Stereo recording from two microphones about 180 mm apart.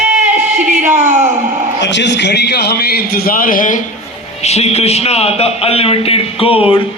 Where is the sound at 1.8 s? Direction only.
75° left (ahead or behind); by 3.8 s 50° left (ahead or behind).